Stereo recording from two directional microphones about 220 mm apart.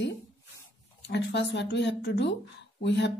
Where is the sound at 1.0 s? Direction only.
50° left (ahead or behind).